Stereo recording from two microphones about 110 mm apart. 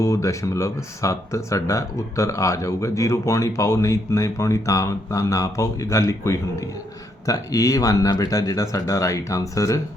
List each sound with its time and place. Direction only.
0.0 s speech: 25° left (ahead or behind)